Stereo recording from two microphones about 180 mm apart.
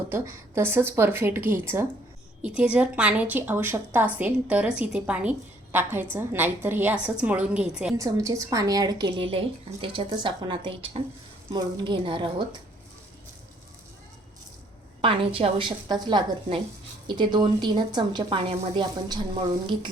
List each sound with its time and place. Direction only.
0.1 s a woman's voice: 15° right (ahead or behind)
7.9 s a woman's voice: 20° right (ahead or behind)
15.0 s a woman's voice: 30° right (ahead or behind)